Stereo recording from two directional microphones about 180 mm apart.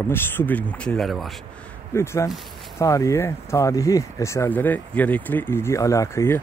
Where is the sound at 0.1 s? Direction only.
10° left (ahead or behind).